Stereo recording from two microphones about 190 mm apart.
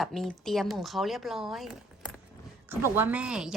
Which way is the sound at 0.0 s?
Centre (ahead or behind).